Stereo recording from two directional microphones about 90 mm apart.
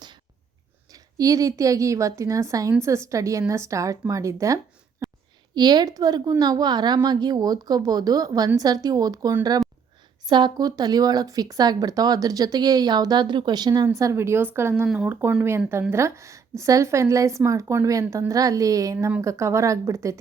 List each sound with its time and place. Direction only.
0.9 s a woman's voice: 40° right (ahead or behind)
5.5 s speech: 50° right (ahead or behind)
13.9 s a woman's voice: 35° right (ahead or behind)